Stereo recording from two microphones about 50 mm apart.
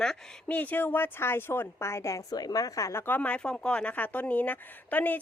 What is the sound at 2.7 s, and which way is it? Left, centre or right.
Speech, left.